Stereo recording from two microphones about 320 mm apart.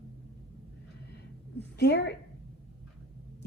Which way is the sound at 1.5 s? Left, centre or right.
Left.